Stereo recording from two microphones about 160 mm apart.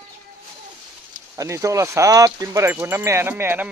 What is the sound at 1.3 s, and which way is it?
Speech, 20° right (ahead or behind).